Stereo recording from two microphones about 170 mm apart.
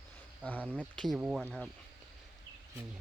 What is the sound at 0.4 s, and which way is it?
Speech, 10° left (ahead or behind).